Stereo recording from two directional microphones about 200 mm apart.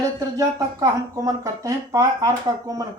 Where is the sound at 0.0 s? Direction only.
15° right (ahead or behind).